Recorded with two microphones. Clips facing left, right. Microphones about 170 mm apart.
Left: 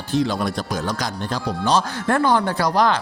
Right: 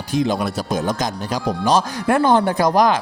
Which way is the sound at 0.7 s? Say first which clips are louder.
Right 4 dB; 20° right (ahead or behind).